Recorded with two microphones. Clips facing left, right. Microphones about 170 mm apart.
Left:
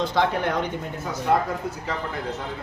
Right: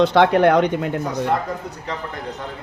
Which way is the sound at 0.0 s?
70° right (ahead or behind).